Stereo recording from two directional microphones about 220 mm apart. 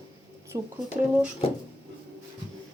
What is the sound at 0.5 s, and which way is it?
Speech, 20° right (ahead or behind).